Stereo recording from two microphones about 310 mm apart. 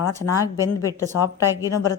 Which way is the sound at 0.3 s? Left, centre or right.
Centre.